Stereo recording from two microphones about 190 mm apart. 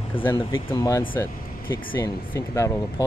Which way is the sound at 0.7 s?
15° left (ahead or behind).